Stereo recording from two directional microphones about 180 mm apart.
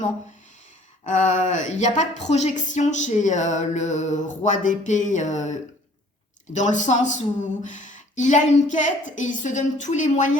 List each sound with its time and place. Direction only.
1.0 s speech: 40° left (ahead or behind)